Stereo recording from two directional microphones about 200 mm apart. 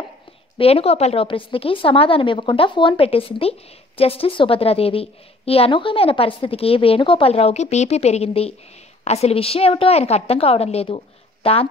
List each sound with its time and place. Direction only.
0.6 s a woman's voice: 30° left (ahead or behind)